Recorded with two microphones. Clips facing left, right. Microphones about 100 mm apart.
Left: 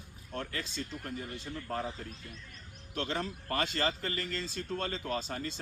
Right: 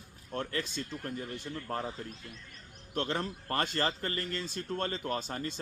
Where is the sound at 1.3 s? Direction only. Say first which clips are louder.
Right 1 dB; 55° right (ahead or behind).